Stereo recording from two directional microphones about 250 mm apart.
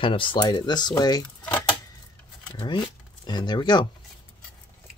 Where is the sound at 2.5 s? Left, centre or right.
Centre.